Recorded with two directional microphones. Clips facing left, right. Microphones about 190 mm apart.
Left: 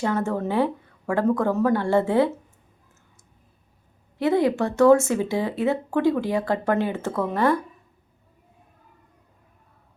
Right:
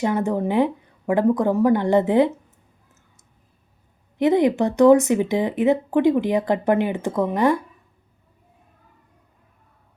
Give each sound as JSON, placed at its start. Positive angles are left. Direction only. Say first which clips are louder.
{"t": 0.0, "sound": "speech", "louder": "right 3 dB", "side_deg": -15}
{"t": 4.2, "sound": "speech", "louder": "right 3 dB", "side_deg": -20}